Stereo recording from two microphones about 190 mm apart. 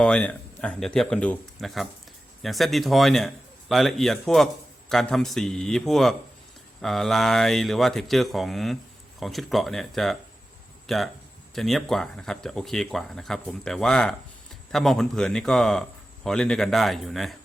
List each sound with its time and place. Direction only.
0.0 s speech: 5° left (ahead or behind)